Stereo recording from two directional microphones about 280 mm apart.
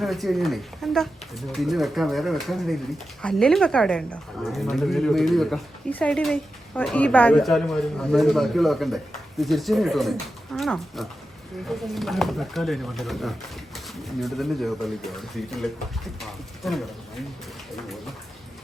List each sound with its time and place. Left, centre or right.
0.0 s speech: centre